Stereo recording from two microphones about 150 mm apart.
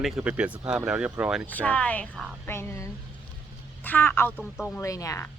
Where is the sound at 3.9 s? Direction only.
15° left (ahead or behind).